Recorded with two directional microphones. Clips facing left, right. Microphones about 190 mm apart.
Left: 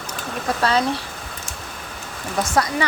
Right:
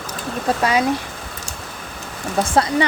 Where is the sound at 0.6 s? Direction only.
15° right (ahead or behind).